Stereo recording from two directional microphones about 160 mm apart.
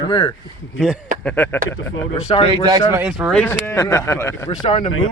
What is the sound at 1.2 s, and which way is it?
Speech, 10° left (ahead or behind).